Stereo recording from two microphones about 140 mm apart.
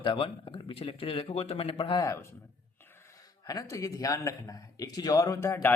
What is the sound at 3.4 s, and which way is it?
Speech, 25° left (ahead or behind).